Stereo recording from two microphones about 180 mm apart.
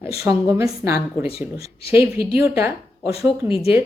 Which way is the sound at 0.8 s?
15° right (ahead or behind).